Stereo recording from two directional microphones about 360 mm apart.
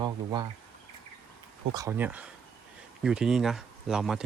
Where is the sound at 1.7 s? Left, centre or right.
Centre.